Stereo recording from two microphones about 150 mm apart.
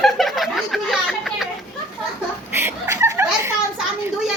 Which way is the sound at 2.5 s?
15° right (ahead or behind).